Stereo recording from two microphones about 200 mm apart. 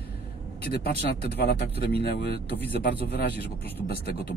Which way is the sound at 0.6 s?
50° left (ahead or behind).